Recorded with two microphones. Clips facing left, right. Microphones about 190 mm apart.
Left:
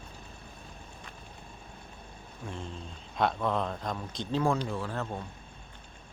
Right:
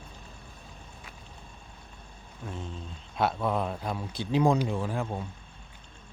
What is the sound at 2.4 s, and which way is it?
Speech, centre (ahead or behind).